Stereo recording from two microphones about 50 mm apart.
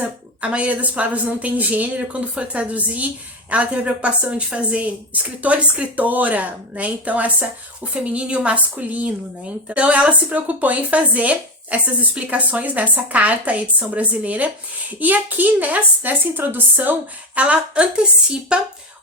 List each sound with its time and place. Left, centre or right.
0.0 s a woman's voice: right
17.3 s a woman's voice: right